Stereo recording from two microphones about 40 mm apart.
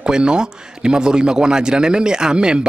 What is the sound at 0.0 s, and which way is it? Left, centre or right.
A man's voice, right.